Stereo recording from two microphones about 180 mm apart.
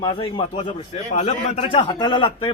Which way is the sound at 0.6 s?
40° left (ahead or behind).